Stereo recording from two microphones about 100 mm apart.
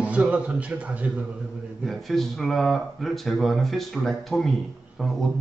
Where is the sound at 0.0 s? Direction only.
15° right (ahead or behind).